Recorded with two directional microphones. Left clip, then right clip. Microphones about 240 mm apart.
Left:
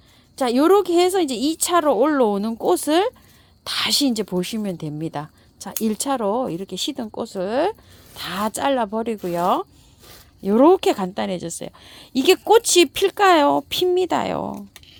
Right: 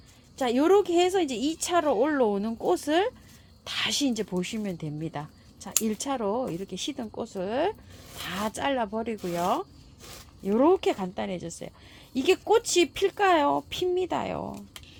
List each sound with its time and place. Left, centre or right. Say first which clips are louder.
0.3 s a woman's voice: left 6 dB; left